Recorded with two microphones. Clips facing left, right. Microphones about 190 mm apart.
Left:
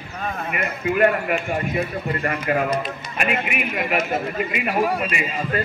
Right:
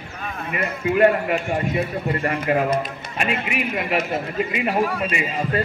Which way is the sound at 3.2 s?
30° right (ahead or behind).